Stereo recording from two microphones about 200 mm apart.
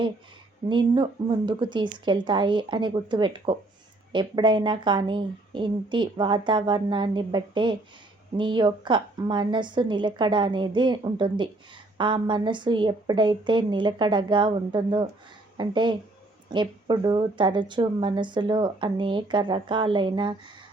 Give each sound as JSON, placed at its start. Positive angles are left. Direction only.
{"t": 0.7, "sound": "a woman's voice", "side_deg": -25}